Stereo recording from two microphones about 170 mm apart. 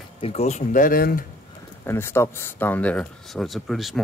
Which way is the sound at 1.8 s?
15° left (ahead or behind).